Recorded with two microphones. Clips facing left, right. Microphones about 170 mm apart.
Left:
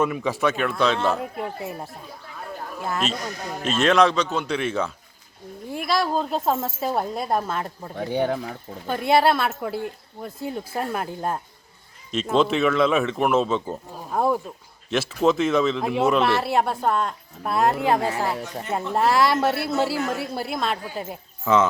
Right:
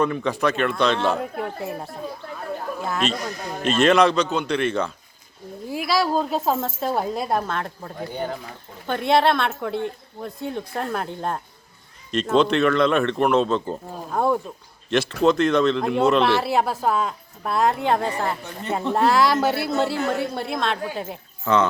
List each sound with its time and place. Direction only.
0.0 s a woman's voice: 5° left (ahead or behind)
7.9 s speech: 70° left (ahead or behind)
8.9 s a woman's voice: 5° left (ahead or behind)